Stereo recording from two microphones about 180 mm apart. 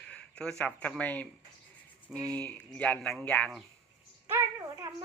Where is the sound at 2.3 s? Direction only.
5° left (ahead or behind).